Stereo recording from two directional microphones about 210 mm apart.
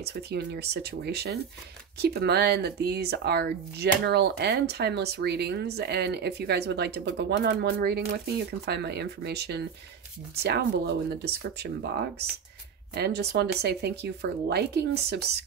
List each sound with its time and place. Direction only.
0.0 s speech: 50° right (ahead or behind)